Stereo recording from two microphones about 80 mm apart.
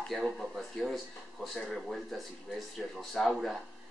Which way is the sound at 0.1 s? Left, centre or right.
Centre.